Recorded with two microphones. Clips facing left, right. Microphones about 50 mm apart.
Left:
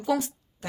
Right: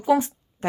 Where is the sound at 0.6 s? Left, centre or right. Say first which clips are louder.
Right 10 dB; right.